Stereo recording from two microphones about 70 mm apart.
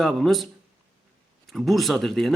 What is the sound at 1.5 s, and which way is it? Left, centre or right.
Speech, centre.